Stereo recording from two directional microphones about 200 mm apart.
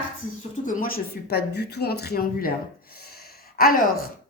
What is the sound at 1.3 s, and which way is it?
A woman's voice, 55° left (ahead or behind).